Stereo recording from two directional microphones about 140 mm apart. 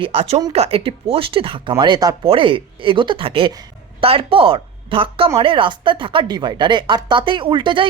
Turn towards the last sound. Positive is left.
turn(degrees=-35)  # may be behind; listen again after turning